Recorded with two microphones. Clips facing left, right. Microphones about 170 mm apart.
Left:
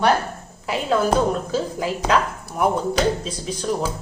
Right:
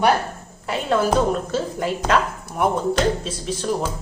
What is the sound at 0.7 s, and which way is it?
A woman's voice, centre (ahead or behind).